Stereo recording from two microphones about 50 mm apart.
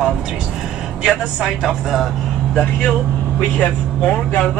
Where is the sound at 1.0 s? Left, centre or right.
Centre.